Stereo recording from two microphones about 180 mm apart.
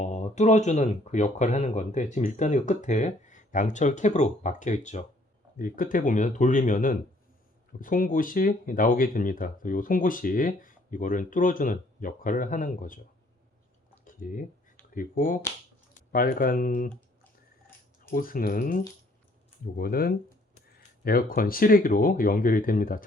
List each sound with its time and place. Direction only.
0.0 s speech: 40° left (ahead or behind)
14.0 s a sound: 50° left (ahead or behind)
14.9 s speech: 50° left (ahead or behind)
18.1 s speech: 50° left (ahead or behind)